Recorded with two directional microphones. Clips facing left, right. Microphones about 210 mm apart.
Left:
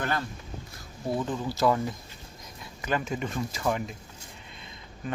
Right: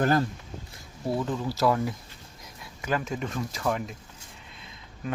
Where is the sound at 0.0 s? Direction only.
40° right (ahead or behind).